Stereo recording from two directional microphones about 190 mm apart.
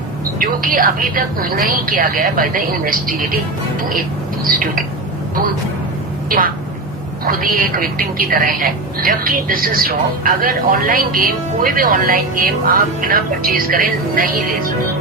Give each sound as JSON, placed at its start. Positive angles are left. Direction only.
{"t": 0.3, "sound": "a woman's voice", "side_deg": -45}
{"t": 4.4, "sound": "a woman's voice", "side_deg": -50}
{"t": 6.2, "sound": "a woman's voice", "side_deg": -50}